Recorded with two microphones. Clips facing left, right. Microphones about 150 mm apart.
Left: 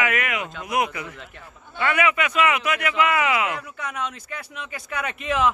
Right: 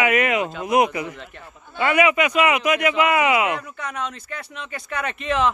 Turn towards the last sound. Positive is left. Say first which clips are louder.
# right 1 dB
turn(degrees=5)  # may be behind; listen again after turning